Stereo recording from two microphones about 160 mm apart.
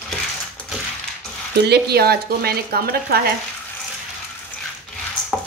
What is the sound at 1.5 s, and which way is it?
A woman's voice, 90° right.